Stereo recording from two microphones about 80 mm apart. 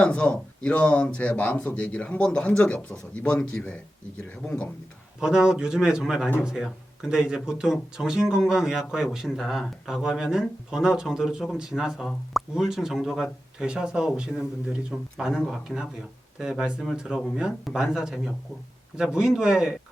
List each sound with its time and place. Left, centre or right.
0.0 s speech: centre
5.2 s speech: centre